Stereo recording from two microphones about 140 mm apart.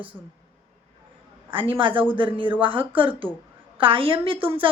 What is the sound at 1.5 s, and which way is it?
A woman's voice, 40° right (ahead or behind).